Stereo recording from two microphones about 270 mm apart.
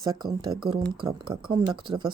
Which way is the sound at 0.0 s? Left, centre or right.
Centre.